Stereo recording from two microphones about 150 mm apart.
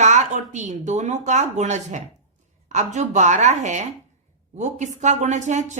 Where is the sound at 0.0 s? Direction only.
50° right (ahead or behind).